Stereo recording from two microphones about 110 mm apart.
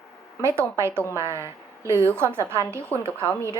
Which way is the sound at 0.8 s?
25° right (ahead or behind).